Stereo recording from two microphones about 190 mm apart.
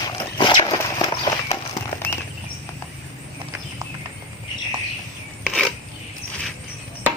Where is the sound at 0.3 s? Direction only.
25° left (ahead or behind).